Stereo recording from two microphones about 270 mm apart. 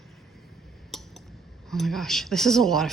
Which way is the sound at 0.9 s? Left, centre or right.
Centre.